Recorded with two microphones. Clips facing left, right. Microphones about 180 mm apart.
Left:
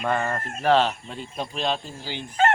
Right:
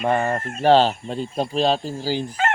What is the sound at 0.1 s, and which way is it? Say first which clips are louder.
Speech: right 4 dB; 30° right (ahead or behind).